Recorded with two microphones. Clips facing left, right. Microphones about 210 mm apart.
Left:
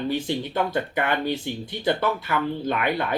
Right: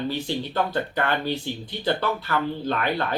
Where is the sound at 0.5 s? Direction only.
15° left (ahead or behind).